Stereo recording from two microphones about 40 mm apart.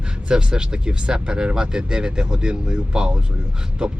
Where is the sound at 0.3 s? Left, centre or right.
Right.